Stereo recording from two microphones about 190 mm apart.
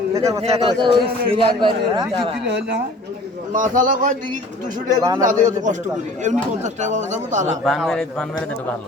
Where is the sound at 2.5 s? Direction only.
65° right (ahead or behind).